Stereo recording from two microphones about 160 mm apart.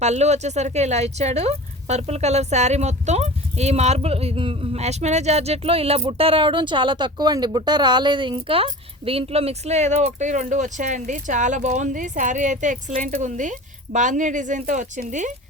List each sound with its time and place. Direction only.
0.0 s speech: 45° right (ahead or behind)